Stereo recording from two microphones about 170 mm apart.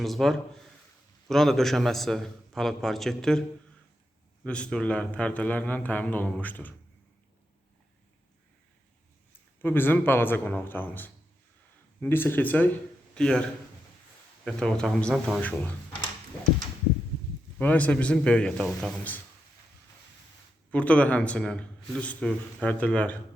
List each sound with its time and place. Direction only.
0.0 s a man's voice: centre (ahead or behind)
4.4 s a man's voice: 5° left (ahead or behind)
9.6 s a man's voice: 10° left (ahead or behind)
14.4 s a man's voice: 5° left (ahead or behind)
17.6 s a man's voice: 10° left (ahead or behind)
20.7 s a man's voice: 10° left (ahead or behind)